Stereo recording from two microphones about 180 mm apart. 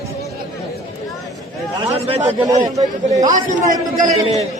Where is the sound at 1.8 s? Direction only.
30° right (ahead or behind).